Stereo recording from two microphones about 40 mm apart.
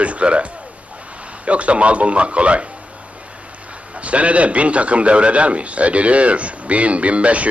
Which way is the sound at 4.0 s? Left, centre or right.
Right.